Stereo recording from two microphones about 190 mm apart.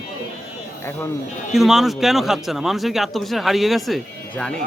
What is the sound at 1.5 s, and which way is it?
A man's voice, centre (ahead or behind).